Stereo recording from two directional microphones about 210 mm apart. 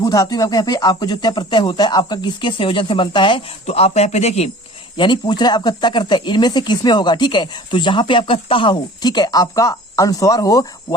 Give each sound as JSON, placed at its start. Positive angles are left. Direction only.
{"t": 0.0, "sound": "speech", "side_deg": 20}